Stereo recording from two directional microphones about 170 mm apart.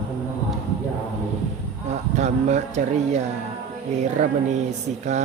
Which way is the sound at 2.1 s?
40° right (ahead or behind).